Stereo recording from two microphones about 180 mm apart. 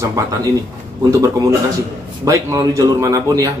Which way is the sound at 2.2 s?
15° right (ahead or behind).